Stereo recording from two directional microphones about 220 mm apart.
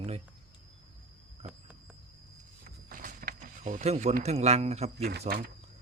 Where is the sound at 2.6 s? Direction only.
40° right (ahead or behind).